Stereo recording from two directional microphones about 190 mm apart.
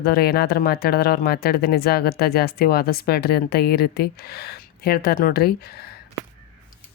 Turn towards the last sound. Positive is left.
turn(degrees=55)  # may be behind; listen again after turning